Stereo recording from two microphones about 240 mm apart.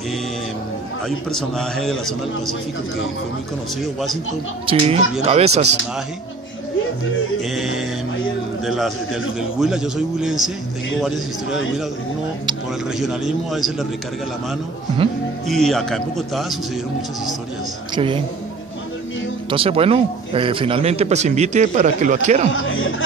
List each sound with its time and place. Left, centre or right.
1.0 s a man's voice: centre
3.8 s a man's voice: centre
4.6 s speech: right
8.6 s a man's voice: centre
13.0 s a man's voice: centre
15.4 s a man's voice: centre
17.9 s speech: right
19.5 s speech: right
22.5 s speech: left